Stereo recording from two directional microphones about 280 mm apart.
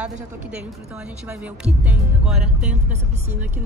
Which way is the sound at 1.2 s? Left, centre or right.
Centre.